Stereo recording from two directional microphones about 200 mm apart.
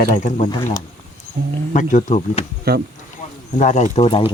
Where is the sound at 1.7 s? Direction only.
40° left (ahead or behind).